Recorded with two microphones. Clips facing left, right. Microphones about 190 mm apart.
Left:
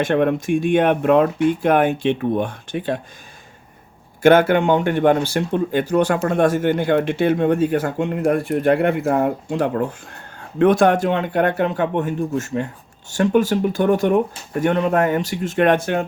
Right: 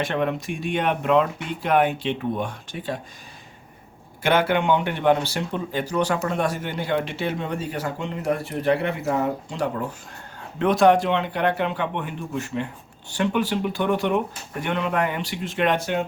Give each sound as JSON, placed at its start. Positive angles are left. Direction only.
{"t": 0.0, "sound": "speech", "side_deg": 50}
{"t": 4.2, "sound": "speech", "side_deg": 45}